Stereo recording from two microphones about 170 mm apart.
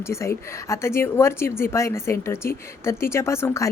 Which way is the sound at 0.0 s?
15° left (ahead or behind).